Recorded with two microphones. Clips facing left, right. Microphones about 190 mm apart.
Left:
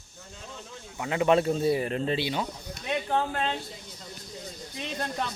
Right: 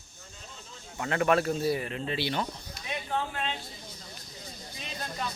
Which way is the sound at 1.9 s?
40° left (ahead or behind).